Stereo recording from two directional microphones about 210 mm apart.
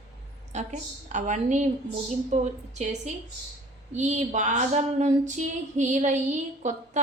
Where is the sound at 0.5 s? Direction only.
35° right (ahead or behind).